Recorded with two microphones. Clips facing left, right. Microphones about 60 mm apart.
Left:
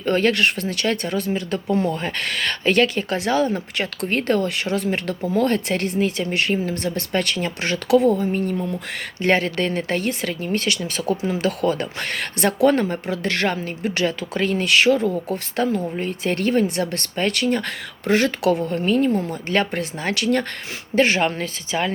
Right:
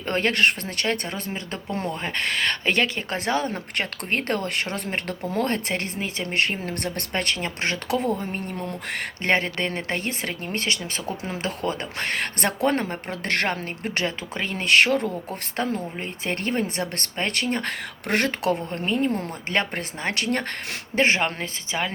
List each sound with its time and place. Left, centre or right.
0.0 s a woman's voice: right
6.6 s speech: right
7.1 s a woman's voice: right
11.9 s a woman's voice: right
18.0 s speech: right
18.4 s a woman's voice: right